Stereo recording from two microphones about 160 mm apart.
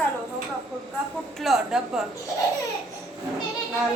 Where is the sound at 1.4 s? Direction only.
5° right (ahead or behind).